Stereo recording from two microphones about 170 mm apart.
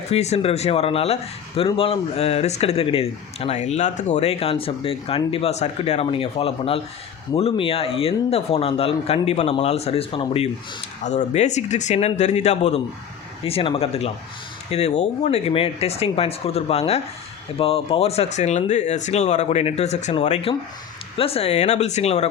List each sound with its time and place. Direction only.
0.1 s speech: 40° left (ahead or behind)
11.0 s speech: 45° left (ahead or behind)